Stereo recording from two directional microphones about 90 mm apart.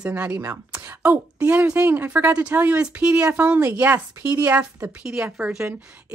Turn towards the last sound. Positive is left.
turn(degrees=-10)  # may be behind; listen again after turning